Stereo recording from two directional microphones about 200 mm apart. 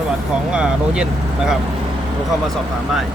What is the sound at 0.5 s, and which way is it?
Speech, 5° right (ahead or behind).